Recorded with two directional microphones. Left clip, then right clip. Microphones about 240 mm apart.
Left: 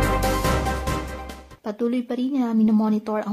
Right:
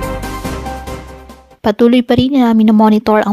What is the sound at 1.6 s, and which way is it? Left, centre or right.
Speech, right.